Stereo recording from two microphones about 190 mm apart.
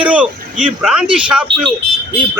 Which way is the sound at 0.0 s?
5° right (ahead or behind).